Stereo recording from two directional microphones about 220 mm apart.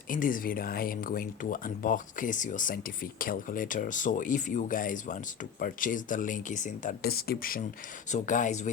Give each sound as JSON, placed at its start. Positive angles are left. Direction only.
{"t": 0.1, "sound": "speech", "side_deg": 40}